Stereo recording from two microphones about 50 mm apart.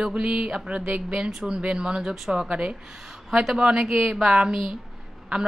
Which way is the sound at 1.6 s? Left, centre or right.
Right.